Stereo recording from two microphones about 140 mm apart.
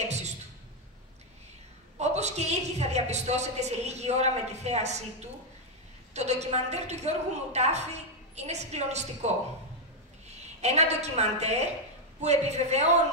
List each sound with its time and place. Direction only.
2.0 s a woman's voice: 50° right (ahead or behind)
10.6 s a woman's voice: 50° right (ahead or behind)